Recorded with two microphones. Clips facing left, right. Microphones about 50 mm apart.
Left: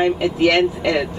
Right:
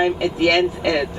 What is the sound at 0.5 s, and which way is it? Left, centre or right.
Speech, left.